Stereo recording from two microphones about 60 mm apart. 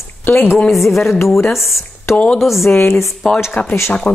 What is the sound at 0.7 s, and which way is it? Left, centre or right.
Speech, centre.